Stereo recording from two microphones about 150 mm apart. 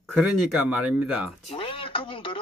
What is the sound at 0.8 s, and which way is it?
Speech, 5° right (ahead or behind).